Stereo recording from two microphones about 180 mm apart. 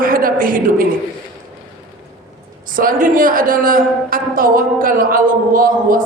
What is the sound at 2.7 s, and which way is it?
A man's voice, 50° right (ahead or behind).